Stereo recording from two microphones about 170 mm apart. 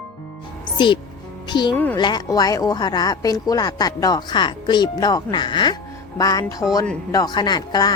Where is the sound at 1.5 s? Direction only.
25° left (ahead or behind).